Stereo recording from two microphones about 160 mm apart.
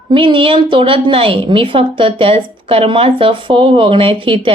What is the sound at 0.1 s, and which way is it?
A woman's voice, 35° right (ahead or behind).